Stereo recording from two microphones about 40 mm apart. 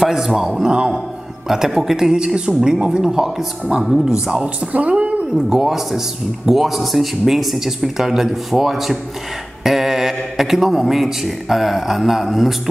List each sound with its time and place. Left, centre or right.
0.0 s speech: centre
1.7 s speech: centre
4.6 s a woman's voice: right
5.5 s speech: centre